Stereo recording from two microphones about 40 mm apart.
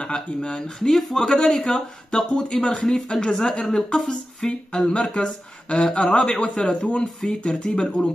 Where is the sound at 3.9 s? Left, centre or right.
Centre.